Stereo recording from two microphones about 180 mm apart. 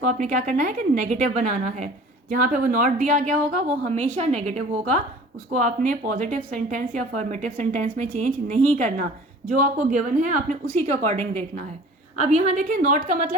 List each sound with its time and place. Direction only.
0.0 s a woman's voice: 40° right (ahead or behind)